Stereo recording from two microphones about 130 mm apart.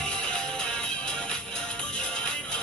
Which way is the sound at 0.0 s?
5° left (ahead or behind).